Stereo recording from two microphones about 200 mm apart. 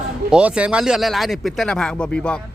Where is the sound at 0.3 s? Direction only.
5° right (ahead or behind).